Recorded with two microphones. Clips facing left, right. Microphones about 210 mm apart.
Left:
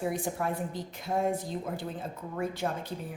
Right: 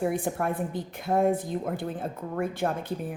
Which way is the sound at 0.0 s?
55° right (ahead or behind).